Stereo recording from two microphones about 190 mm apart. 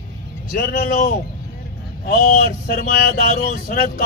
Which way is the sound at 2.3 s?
55° left (ahead or behind).